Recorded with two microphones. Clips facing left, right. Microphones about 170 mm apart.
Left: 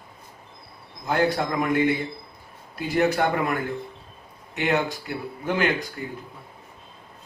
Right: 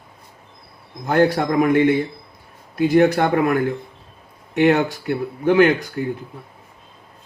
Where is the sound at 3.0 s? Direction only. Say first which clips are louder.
Right 5 dB; 50° right (ahead or behind).